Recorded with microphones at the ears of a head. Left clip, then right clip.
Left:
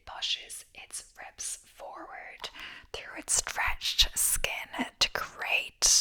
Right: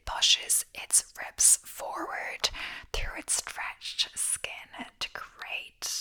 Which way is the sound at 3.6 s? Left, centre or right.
Left.